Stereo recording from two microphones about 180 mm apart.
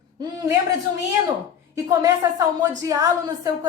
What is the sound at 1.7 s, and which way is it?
A woman's voice, 15° right (ahead or behind).